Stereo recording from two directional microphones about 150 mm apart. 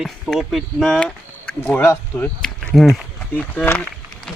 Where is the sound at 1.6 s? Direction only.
15° left (ahead or behind).